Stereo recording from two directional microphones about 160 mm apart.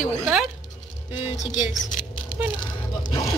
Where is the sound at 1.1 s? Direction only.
45° left (ahead or behind).